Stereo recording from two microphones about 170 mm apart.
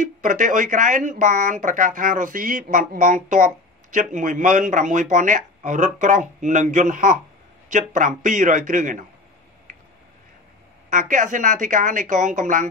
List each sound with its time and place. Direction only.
0.0 s speech: 50° right (ahead or behind)
10.9 s speech: 50° right (ahead or behind)